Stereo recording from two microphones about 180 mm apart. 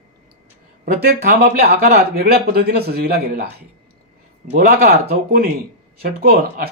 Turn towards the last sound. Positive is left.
turn(degrees=-55)  # may be behind; listen again after turning